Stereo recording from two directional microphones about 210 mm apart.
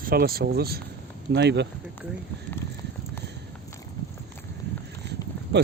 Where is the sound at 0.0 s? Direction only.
45° right (ahead or behind).